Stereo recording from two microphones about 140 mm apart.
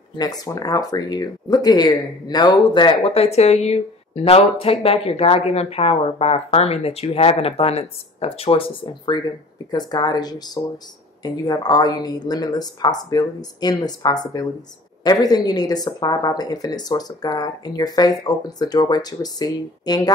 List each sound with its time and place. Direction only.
0.2 s speech: 25° left (ahead or behind)